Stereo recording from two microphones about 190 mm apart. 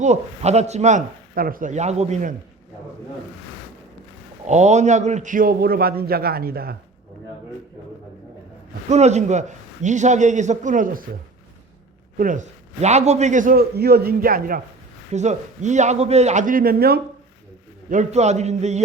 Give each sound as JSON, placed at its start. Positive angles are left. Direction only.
{"t": 0.0, "sound": "a man's voice", "side_deg": -35}
{"t": 4.4, "sound": "a man's voice", "side_deg": -35}
{"t": 8.9, "sound": "a man's voice", "side_deg": -35}
{"t": 12.1, "sound": "a man's voice", "side_deg": -45}
{"t": 15.1, "sound": "a man's voice", "side_deg": -35}
{"t": 17.8, "sound": "a man's voice", "side_deg": -40}